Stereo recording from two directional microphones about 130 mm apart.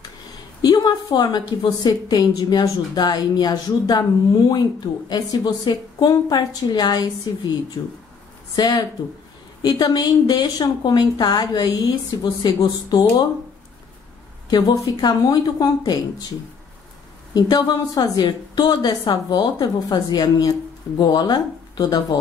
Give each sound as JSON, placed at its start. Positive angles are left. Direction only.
{"t": 0.6, "sound": "speech", "side_deg": 30}
{"t": 14.5, "sound": "speech", "side_deg": 30}
{"t": 17.3, "sound": "speech", "side_deg": 30}